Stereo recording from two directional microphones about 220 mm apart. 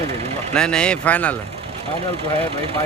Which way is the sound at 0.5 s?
5° left (ahead or behind).